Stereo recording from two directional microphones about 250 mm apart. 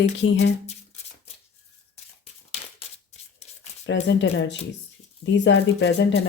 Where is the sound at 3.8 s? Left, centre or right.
Left.